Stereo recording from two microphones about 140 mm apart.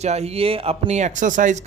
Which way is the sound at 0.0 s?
50° right (ahead or behind).